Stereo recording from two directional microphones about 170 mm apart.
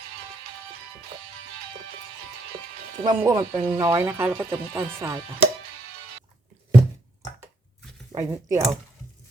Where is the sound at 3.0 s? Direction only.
25° right (ahead or behind).